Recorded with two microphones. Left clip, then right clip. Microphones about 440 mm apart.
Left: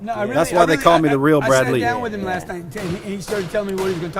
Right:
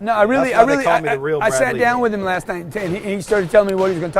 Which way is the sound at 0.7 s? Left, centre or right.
Right.